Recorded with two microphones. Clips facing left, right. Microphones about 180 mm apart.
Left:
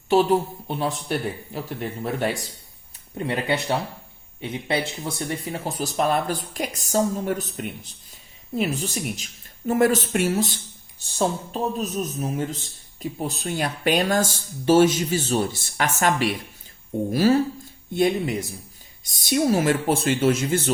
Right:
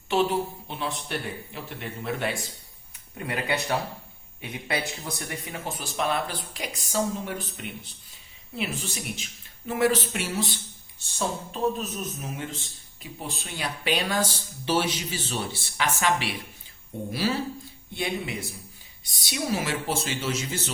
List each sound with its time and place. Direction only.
0.1 s speech: 40° left (ahead or behind)
3.2 s a man's voice: 25° left (ahead or behind); by 20.7 s 55° left (ahead or behind)